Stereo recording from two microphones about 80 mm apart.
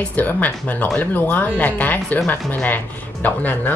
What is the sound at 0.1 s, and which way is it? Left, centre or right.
Speech, centre.